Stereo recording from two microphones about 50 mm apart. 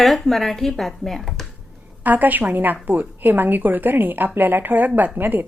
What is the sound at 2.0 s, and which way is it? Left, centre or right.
A woman's voice, right.